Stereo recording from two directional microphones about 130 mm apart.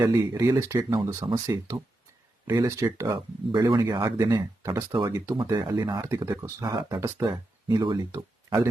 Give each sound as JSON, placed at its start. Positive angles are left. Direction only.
{"t": 0.0, "sound": "speech", "side_deg": -30}
{"t": 3.1, "sound": "speech", "side_deg": -35}
{"t": 6.1, "sound": "speech", "side_deg": -15}